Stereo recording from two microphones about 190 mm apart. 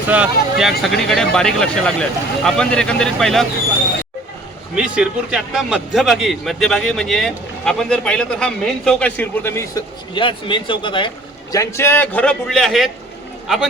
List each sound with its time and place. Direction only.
0.1 s a man's voice: 5° right (ahead or behind)
4.7 s a man's voice: 5° right (ahead or behind); by 9.8 s 15° left (ahead or behind)
10.2 s a man's voice: 25° left (ahead or behind); by 12.9 s centre (ahead or behind)